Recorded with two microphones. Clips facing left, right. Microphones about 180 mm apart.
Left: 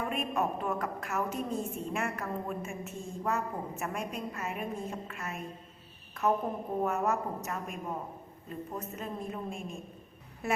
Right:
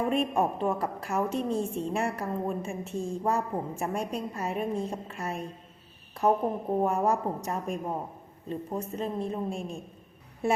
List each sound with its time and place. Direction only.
0.0 s a woman's voice: 30° right (ahead or behind)
6.4 s a woman's voice: 30° right (ahead or behind)